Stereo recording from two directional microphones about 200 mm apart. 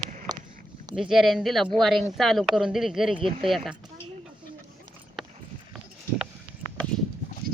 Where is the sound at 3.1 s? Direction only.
25° right (ahead or behind).